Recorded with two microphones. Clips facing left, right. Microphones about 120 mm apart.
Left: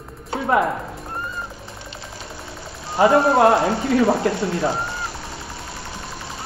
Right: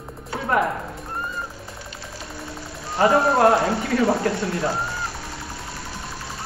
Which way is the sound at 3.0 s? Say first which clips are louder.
Left 2 dB; 15° left (ahead or behind).